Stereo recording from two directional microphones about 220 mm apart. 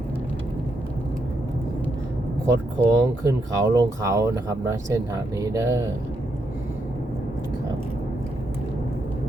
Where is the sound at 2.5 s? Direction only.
15° right (ahead or behind).